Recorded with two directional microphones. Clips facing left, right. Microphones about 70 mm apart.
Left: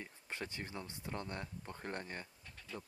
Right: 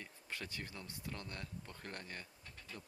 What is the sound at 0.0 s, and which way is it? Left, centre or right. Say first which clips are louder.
Speech: left 3 dB; left.